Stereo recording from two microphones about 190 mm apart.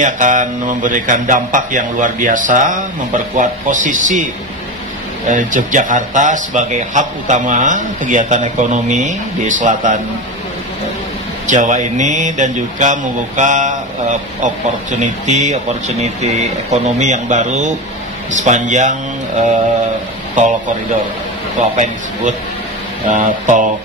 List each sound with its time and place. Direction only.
0.0 s speech: 40° right (ahead or behind)
5.3 s speech: 45° right (ahead or behind)
11.4 s speech: 40° right (ahead or behind)
21.7 s speech: 40° right (ahead or behind)